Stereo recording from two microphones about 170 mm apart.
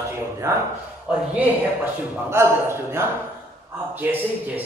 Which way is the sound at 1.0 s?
5° right (ahead or behind).